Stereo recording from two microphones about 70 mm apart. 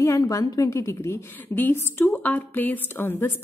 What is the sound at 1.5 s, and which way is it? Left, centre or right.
A woman's voice, left.